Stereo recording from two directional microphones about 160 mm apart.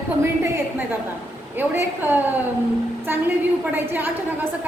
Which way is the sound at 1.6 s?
10° right (ahead or behind).